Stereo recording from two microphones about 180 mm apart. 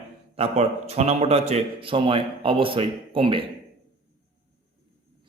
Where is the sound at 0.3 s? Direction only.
35° right (ahead or behind).